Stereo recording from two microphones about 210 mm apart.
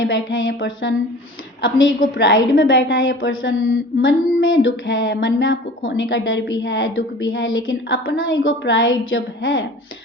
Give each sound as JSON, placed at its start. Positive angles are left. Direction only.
{"t": 0.0, "sound": "a woman's voice", "side_deg": 65}
{"t": 2.1, "sound": "a woman's voice", "side_deg": 65}